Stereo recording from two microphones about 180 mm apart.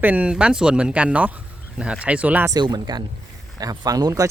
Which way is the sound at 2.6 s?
25° right (ahead or behind).